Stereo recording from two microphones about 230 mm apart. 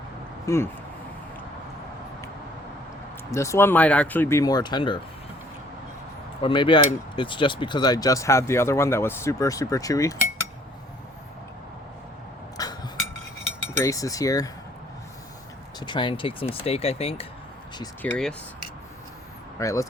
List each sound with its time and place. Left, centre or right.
0.4 s speech: centre
3.3 s speech: centre
6.4 s speech: left
12.6 s a sound: centre
13.7 s speech: centre
15.8 s speech: centre
18.0 s speech: centre
19.5 s speech: centre